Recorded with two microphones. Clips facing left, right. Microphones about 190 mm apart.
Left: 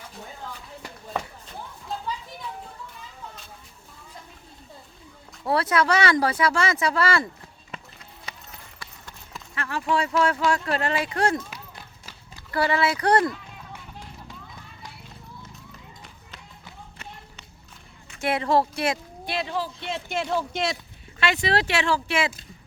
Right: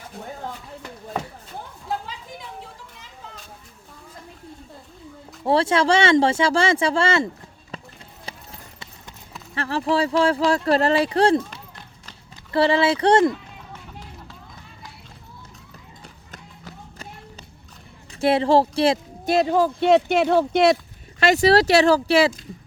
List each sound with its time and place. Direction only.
5.5 s speech: 25° right (ahead or behind)
8.3 s clip-clop: 30° right (ahead or behind)
9.6 s speech: 35° right (ahead or behind)
12.5 s speech: 25° right (ahead or behind)
16.3 s run: 40° right (ahead or behind)
18.1 s speech: 30° right (ahead or behind)
19.2 s speech: 45° right (ahead or behind); by 20.7 s 60° right (ahead or behind)
21.2 s speech: 40° right (ahead or behind)